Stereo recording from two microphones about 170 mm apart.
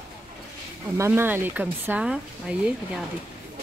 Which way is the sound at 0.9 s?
15° right (ahead or behind).